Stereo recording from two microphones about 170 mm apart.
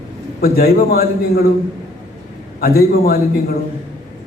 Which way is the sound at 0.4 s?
60° left (ahead or behind).